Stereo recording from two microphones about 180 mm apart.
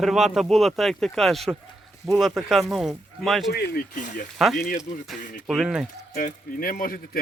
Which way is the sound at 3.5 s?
60° left (ahead or behind).